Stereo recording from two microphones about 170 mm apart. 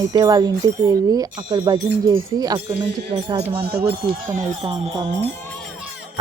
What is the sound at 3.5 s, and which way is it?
Speech, 70° right (ahead or behind).